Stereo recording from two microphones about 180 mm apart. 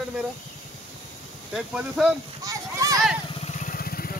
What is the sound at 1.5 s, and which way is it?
Speech, 5° right (ahead or behind).